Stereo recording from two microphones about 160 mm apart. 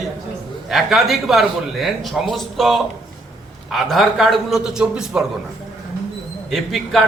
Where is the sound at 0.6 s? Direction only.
Centre (ahead or behind).